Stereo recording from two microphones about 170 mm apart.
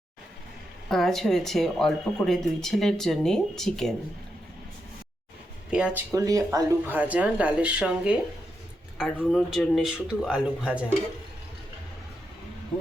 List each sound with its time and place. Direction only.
0.9 s speech: centre (ahead or behind)
5.7 s speech: 5° right (ahead or behind)
6.1 s speech: 20° right (ahead or behind)